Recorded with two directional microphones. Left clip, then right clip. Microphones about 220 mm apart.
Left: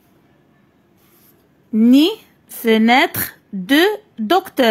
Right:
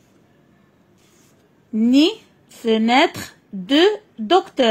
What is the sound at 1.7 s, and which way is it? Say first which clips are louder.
Speech: left 3 dB; 25° left (ahead or behind).